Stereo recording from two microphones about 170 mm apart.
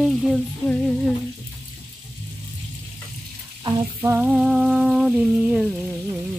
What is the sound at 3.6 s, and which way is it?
Frying, 25° right (ahead or behind).